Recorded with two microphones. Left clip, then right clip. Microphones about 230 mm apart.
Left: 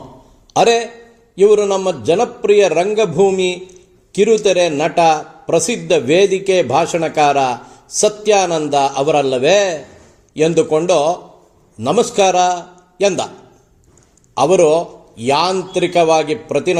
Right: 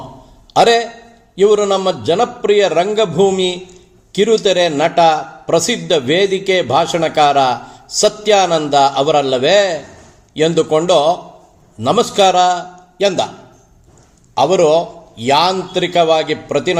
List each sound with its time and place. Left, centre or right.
0.5 s a man's voice: centre
14.3 s a man's voice: centre